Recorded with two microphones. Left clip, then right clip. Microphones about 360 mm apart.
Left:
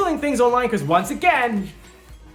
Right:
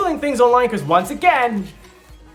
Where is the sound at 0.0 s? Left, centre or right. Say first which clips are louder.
Right 3 dB; centre.